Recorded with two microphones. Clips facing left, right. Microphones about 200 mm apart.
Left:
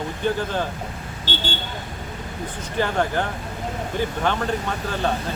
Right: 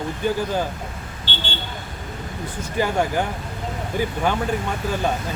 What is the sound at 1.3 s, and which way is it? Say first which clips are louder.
Vehicle: left 4 dB; 45° left (ahead or behind).